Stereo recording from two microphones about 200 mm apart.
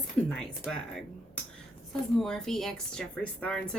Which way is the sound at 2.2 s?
Centre (ahead or behind).